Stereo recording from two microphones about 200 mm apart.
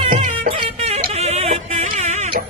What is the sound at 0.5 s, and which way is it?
Music, 30° right (ahead or behind).